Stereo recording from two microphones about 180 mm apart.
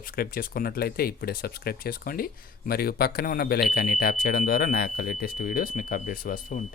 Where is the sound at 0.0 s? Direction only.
50° left (ahead or behind).